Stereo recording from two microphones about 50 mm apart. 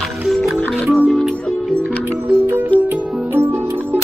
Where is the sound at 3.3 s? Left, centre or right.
Right.